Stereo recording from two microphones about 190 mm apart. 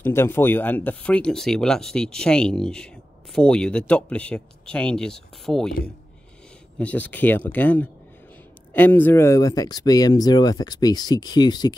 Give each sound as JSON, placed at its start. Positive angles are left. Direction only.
{"t": 0.0, "sound": "speech", "side_deg": 10}
{"t": 6.8, "sound": "speech", "side_deg": 10}